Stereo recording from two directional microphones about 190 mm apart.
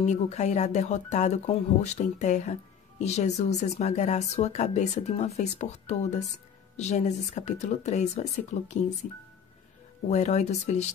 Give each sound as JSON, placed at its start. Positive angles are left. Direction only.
{"t": 0.0, "sound": "speech", "side_deg": 35}